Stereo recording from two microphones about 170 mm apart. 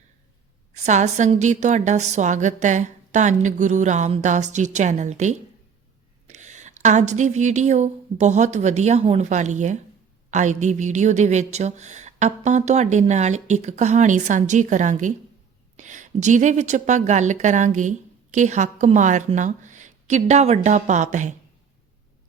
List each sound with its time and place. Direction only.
0.7 s a woman's voice: 40° right (ahead or behind)